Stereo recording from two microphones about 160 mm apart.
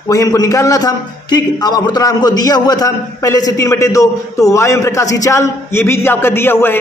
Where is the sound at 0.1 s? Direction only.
20° left (ahead or behind).